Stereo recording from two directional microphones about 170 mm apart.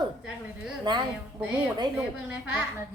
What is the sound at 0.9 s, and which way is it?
Speech, 25° right (ahead or behind).